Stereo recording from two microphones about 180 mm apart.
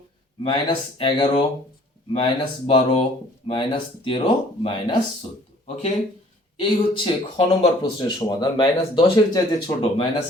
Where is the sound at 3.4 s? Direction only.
30° left (ahead or behind).